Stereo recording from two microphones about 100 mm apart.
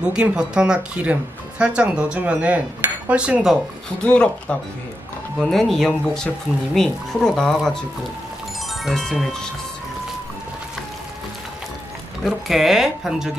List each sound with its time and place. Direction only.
0.0 s speech: 10° right (ahead or behind)
4.0 s speech: 10° left (ahead or behind)
8.8 s speech: 5° left (ahead or behind)
12.3 s speech: centre (ahead or behind)